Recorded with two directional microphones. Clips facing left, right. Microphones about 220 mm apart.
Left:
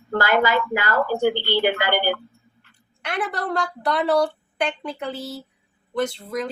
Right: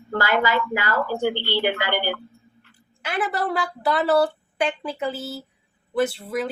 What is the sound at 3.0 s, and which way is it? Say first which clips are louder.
Speech: right 2 dB; 5° right (ahead or behind).